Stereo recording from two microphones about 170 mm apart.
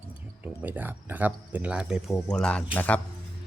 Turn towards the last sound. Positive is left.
turn(degrees=10)  # may be behind; listen again after turning